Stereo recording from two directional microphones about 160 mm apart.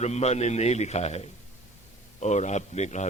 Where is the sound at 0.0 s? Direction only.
45° left (ahead or behind).